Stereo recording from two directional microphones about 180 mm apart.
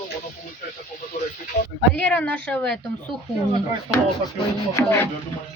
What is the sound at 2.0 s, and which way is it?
Speech, 5° left (ahead or behind).